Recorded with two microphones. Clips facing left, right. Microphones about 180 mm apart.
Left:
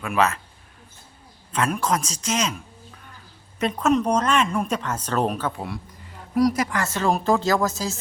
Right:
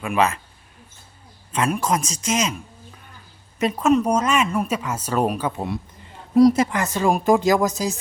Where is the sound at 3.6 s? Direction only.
5° right (ahead or behind).